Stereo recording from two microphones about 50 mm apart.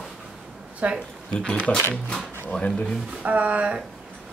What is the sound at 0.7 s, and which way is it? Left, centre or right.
Speech, right.